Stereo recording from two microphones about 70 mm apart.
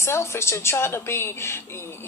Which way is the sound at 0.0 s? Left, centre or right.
Left.